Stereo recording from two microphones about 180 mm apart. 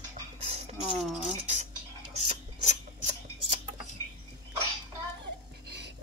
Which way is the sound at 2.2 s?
40° right (ahead or behind).